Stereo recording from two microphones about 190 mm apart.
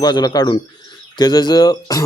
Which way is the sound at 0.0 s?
20° left (ahead or behind).